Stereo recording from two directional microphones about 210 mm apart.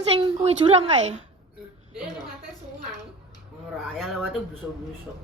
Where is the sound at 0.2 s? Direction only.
25° right (ahead or behind).